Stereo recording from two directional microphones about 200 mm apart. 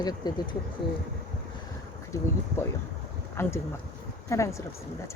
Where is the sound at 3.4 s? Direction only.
10° left (ahead or behind).